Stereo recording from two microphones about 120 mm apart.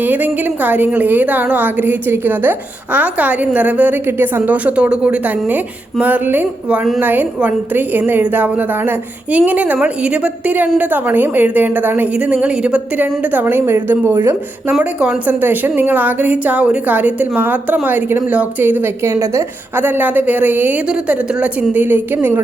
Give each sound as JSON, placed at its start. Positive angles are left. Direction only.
{"t": 0.0, "sound": "a woman's voice", "side_deg": -15}
{"t": 14.8, "sound": "a woman's voice", "side_deg": -10}